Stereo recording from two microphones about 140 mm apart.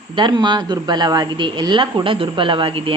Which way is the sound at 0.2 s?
30° right (ahead or behind).